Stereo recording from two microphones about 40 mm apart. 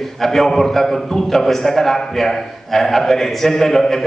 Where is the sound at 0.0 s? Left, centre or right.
Centre.